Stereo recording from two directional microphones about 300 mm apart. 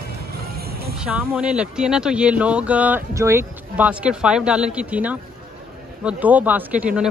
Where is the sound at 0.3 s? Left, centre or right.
Right.